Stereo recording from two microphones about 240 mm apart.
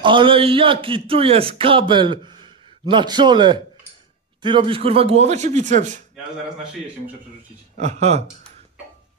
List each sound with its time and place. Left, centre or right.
0.0 s a man's voice: right
7.7 s a man's voice: right